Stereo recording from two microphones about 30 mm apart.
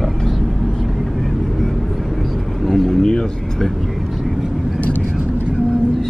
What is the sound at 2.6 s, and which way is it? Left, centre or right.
Vehicle, centre.